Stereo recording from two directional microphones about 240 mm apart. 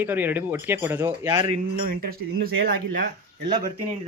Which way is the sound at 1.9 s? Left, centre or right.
Right.